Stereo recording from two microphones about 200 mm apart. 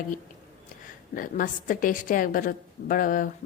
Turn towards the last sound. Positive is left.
turn(degrees=40)  # may be behind; listen again after turning